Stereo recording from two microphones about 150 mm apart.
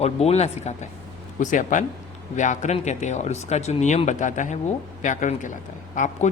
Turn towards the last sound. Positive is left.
turn(degrees=55)  # may be behind; listen again after turning